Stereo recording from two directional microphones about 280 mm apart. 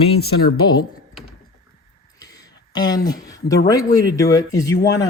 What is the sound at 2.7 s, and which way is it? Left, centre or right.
Speech, centre.